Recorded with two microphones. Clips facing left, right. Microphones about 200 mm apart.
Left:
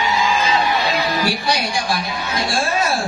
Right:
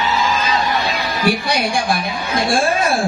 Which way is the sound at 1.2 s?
55° right (ahead or behind).